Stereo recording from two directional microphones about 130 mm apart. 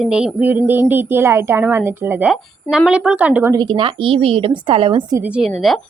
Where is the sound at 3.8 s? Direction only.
40° right (ahead or behind).